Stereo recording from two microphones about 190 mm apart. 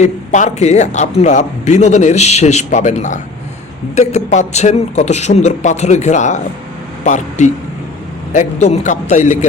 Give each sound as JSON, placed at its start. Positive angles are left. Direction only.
{"t": 0.0, "sound": "speech", "side_deg": 40}